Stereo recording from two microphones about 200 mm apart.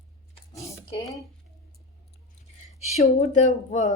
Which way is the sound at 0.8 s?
25° left (ahead or behind).